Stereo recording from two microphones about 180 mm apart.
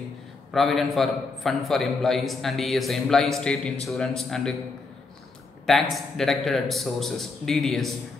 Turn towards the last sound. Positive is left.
turn(degrees=0)  # may be behind; listen again after turning